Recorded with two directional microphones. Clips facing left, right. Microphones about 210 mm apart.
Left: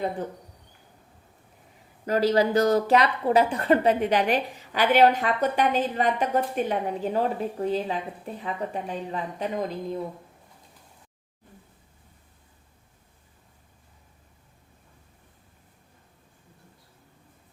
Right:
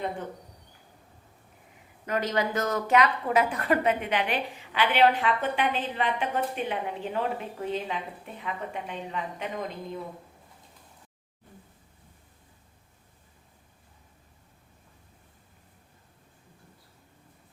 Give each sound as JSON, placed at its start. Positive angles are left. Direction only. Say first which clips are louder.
{"t": 2.0, "sound": "speech", "louder": "left 6 dB", "side_deg": 35}